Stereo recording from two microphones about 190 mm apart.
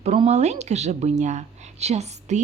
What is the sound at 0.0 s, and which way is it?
Speech, 35° right (ahead or behind).